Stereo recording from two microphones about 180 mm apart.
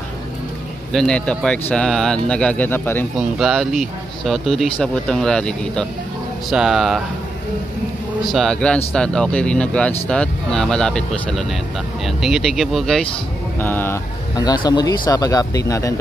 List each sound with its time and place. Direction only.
0.9 s speech: 5° left (ahead or behind)
3.2 s speech: 5° right (ahead or behind)
8.3 s speech: centre (ahead or behind)
13.6 s speech: 10° left (ahead or behind)
14.3 s speech: 25° left (ahead or behind)